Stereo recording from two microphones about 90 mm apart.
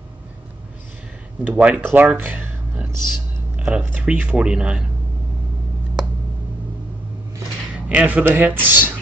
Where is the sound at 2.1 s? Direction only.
20° right (ahead or behind).